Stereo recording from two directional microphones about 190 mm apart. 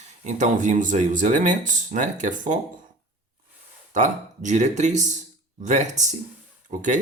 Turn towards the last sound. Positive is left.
turn(degrees=-40)  # may be behind; listen again after turning